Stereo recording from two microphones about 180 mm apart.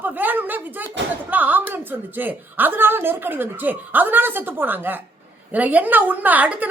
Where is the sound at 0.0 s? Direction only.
10° right (ahead or behind).